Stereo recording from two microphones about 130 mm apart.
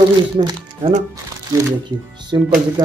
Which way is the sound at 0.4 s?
40° right (ahead or behind).